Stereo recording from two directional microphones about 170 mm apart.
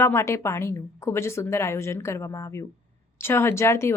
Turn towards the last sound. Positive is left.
turn(degrees=15)  # may be behind; listen again after turning